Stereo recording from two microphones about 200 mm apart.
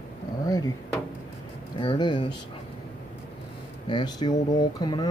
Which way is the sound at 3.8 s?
20° left (ahead or behind).